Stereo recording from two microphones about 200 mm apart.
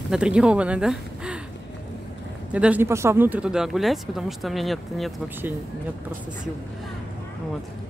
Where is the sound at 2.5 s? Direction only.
5° right (ahead or behind).